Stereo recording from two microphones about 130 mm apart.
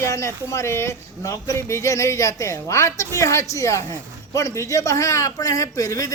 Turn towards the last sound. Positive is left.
turn(degrees=30)  # may be behind; listen again after turning